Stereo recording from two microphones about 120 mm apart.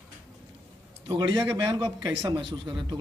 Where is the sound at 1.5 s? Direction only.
30° right (ahead or behind).